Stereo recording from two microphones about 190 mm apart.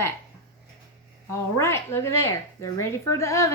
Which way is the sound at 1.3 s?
15° left (ahead or behind).